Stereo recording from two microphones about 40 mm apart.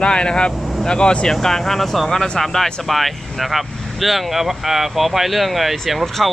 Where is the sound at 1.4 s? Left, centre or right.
Centre.